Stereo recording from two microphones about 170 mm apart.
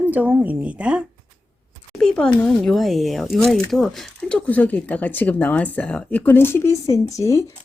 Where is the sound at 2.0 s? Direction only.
5° left (ahead or behind).